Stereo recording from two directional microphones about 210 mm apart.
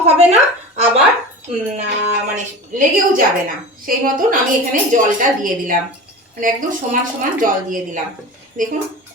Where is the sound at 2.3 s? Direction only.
40° right (ahead or behind).